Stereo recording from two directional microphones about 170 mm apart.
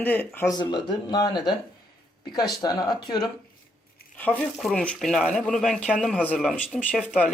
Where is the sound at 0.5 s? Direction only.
25° left (ahead or behind).